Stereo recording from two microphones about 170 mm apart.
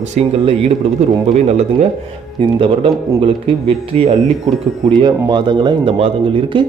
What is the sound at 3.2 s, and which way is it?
Speech, 30° right (ahead or behind).